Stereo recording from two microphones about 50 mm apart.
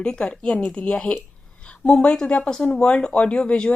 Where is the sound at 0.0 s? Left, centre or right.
Centre.